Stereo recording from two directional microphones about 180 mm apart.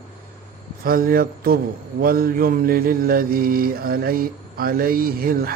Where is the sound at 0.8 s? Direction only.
55° right (ahead or behind).